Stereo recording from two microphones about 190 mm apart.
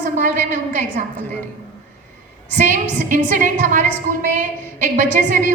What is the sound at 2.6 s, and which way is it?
A woman's voice, 40° right (ahead or behind).